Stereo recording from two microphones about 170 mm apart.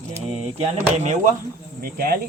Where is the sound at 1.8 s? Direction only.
60° right (ahead or behind).